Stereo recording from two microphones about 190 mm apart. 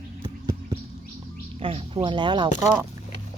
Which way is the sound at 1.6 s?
30° right (ahead or behind).